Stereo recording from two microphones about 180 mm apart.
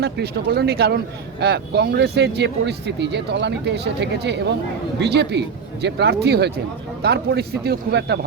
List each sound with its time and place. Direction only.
0.0 s a man's voice: 65° right (ahead or behind)